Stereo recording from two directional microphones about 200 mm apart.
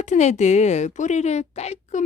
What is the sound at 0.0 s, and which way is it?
Speech, 35° left (ahead or behind).